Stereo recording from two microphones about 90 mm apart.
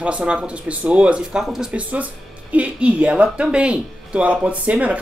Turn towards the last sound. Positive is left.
turn(degrees=-15)  # may be behind; listen again after turning